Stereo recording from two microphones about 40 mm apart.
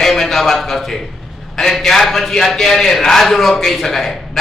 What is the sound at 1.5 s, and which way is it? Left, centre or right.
A man's voice, centre.